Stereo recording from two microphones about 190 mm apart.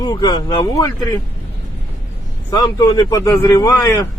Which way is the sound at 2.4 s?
20° left (ahead or behind).